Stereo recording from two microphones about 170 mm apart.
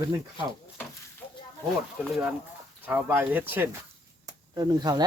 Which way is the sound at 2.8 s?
10° right (ahead or behind).